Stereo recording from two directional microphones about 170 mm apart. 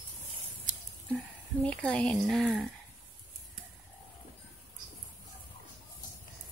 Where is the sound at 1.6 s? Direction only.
5° left (ahead or behind).